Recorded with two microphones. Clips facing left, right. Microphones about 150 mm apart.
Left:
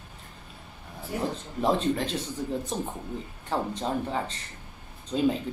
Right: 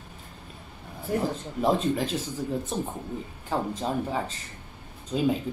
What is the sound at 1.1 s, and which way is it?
Speech, 55° right (ahead or behind).